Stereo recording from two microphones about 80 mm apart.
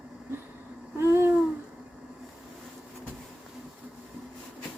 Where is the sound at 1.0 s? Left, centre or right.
Right.